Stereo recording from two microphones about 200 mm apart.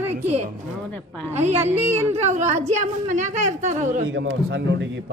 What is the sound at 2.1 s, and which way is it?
Speech, 35° right (ahead or behind).